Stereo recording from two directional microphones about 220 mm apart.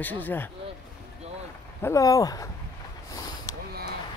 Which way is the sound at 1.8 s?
15° left (ahead or behind).